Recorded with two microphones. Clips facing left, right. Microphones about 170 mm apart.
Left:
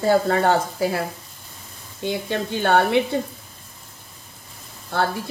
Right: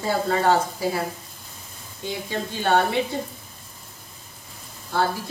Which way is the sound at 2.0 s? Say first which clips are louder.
Left 4 dB; 65° left (ahead or behind).